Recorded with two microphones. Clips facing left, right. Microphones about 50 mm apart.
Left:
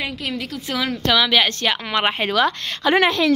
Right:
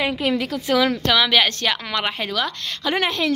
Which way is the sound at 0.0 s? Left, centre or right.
Centre.